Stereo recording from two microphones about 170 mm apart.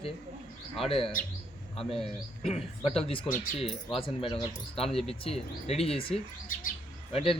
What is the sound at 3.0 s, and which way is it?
Speech, 30° left (ahead or behind).